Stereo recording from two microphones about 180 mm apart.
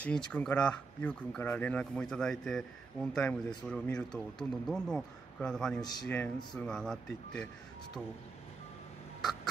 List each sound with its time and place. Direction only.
0.3 s speech: 5° left (ahead or behind)
5.8 s a man's voice: 20° left (ahead or behind)
6.0 s speech: 10° left (ahead or behind)